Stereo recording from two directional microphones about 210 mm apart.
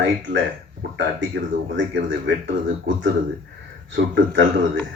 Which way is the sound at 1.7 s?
60° right (ahead or behind).